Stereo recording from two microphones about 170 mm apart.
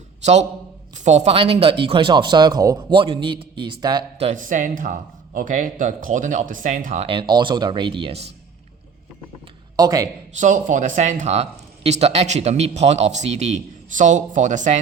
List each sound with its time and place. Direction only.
0.2 s a man's voice: 40° right (ahead or behind); by 4.0 s 25° right (ahead or behind)
4.2 s speech: 45° right (ahead or behind)
9.7 s speech: 20° right (ahead or behind)
10.3 s speech: 45° right (ahead or behind)